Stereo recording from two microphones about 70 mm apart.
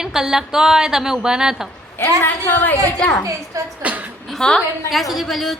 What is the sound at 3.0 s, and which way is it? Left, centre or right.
Speech, centre.